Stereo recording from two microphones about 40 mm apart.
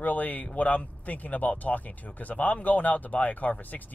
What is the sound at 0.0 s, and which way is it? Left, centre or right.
Speech, left.